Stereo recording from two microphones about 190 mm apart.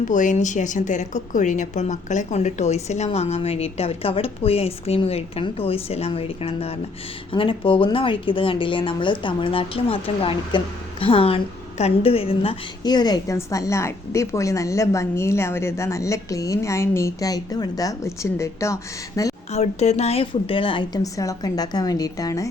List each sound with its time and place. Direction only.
0.0 s a woman's voice: 40° left (ahead or behind); by 19.3 s 15° left (ahead or behind)
19.5 s speech: 35° left (ahead or behind); by 22.4 s 20° left (ahead or behind)